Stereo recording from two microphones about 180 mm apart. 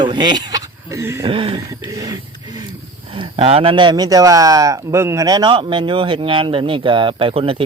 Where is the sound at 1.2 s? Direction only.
30° right (ahead or behind).